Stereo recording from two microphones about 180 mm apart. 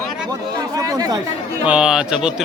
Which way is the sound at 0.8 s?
20° right (ahead or behind).